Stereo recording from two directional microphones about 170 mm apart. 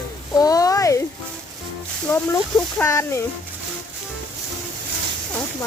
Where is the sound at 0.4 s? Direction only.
20° left (ahead or behind).